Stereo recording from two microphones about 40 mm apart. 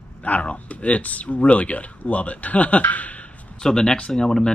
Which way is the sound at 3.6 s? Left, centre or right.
Centre.